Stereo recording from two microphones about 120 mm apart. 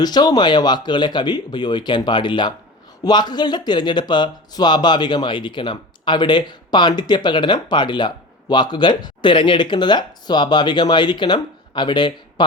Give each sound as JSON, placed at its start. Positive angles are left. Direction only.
{"t": 0.0, "sound": "speech", "side_deg": 35}